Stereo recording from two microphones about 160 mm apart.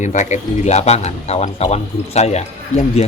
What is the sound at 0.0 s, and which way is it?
Speech, 50° left (ahead or behind).